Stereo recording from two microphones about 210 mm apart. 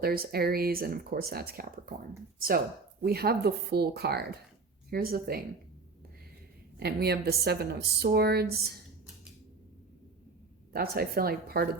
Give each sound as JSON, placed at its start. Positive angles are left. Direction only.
{"t": 0.0, "sound": "speech", "side_deg": -45}
{"t": 3.0, "sound": "speech", "side_deg": -50}
{"t": 6.7, "sound": "speech", "side_deg": -50}
{"t": 10.7, "sound": "speech", "side_deg": -45}